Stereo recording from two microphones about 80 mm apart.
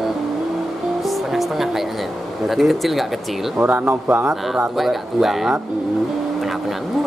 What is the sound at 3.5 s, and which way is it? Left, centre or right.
Speech, right.